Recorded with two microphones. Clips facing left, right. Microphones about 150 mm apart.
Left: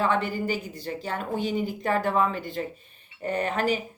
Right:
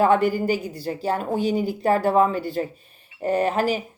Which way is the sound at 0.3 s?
40° right (ahead or behind).